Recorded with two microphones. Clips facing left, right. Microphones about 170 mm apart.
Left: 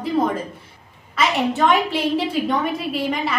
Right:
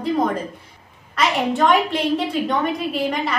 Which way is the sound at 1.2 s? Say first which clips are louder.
Even; centre (ahead or behind).